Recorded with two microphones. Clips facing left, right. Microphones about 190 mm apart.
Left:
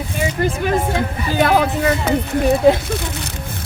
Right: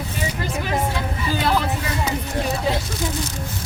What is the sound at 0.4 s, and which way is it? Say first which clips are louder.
A woman's voice: left 5 dB; 50° left (ahead or behind).